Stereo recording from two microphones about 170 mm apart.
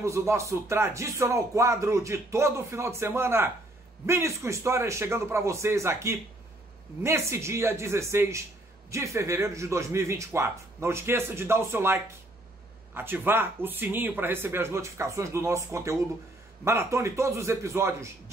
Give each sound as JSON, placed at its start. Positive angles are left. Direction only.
{"t": 0.0, "sound": "speech", "side_deg": -15}